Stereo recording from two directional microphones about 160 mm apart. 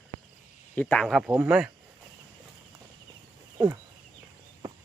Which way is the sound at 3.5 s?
20° right (ahead or behind).